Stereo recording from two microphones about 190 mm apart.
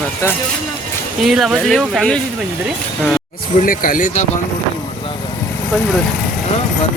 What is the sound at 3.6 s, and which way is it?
Speech, 45° left (ahead or behind).